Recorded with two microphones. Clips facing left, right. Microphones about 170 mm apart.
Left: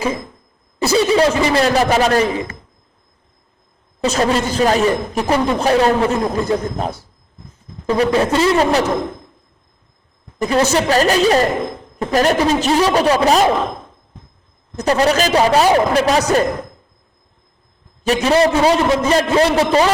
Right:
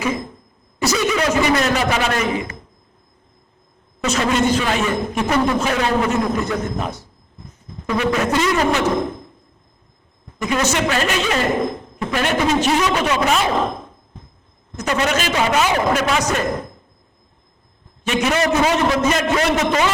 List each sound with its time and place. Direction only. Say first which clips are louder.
0.8 s a man's voice: left 5 dB; 30° left (ahead or behind)
4.0 s a man's voice: left 1 dB; 35° left (ahead or behind)
10.3 s a man's voice: left 4 dB; 35° left (ahead or behind)
14.8 s a man's voice: left 5 dB; 35° left (ahead or behind)
18.0 s a man's voice: left 5 dB; 35° left (ahead or behind)